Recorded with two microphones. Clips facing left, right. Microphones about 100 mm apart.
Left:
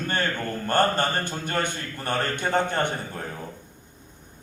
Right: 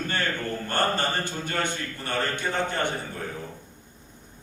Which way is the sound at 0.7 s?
50° left (ahead or behind).